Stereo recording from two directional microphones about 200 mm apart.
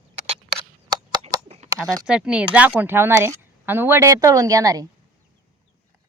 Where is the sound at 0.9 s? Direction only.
20° right (ahead or behind).